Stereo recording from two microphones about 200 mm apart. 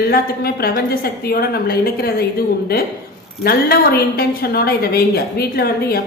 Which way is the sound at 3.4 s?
50° left (ahead or behind).